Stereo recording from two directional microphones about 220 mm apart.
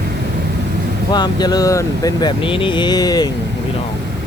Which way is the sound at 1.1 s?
20° left (ahead or behind).